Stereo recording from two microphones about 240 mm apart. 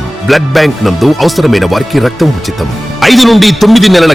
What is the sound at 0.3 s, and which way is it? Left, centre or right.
A man's voice, centre.